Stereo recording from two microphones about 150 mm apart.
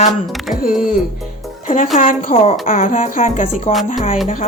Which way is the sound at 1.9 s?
60° left (ahead or behind).